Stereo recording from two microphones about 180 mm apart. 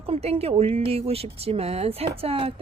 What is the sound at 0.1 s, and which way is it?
Speech, 35° right (ahead or behind).